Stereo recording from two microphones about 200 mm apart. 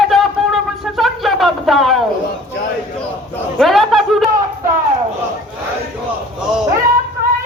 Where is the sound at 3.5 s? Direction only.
Centre (ahead or behind).